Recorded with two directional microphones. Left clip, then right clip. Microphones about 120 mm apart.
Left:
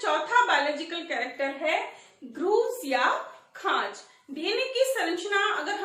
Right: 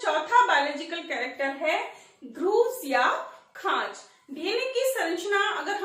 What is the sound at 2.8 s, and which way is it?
A woman's voice, 40° left (ahead or behind).